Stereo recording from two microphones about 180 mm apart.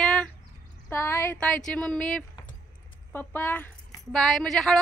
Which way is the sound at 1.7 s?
5° left (ahead or behind).